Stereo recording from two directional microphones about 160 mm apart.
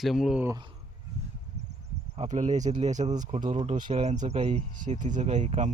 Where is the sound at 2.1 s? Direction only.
45° right (ahead or behind).